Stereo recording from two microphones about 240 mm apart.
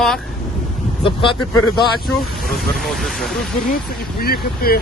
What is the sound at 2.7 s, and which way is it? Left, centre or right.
Speech, centre.